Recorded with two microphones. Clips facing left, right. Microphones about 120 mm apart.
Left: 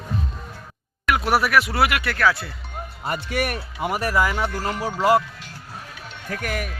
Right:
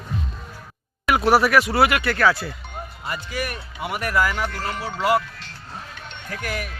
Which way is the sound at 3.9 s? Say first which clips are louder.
Left 2 dB; 30° left (ahead or behind).